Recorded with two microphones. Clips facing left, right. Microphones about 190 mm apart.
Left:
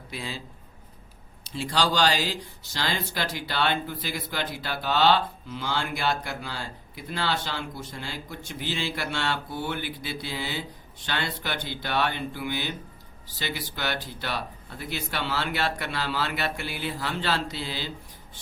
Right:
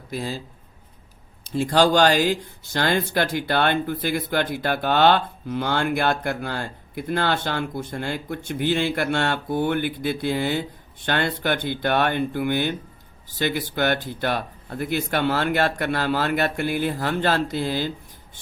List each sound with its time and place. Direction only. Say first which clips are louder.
0.1 s speech: right 7 dB; 45° right (ahead or behind)
1.5 s speech: right 8 dB; 50° right (ahead or behind)